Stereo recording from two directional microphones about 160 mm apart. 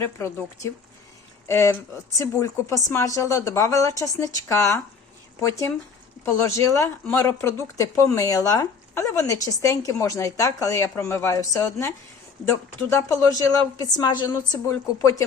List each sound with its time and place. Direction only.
0.0 s speech: 15° left (ahead or behind)